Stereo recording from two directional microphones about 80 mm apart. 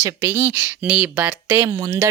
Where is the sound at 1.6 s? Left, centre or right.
Right.